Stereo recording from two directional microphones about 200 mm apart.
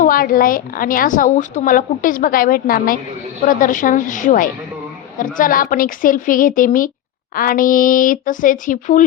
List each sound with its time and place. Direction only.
0.0 s a woman's voice: 45° left (ahead or behind)